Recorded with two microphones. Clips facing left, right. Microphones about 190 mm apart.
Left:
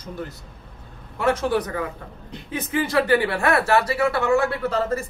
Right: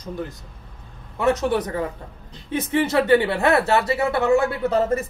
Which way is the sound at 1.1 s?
25° right (ahead or behind).